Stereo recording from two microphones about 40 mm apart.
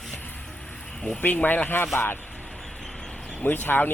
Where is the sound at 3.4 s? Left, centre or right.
Left.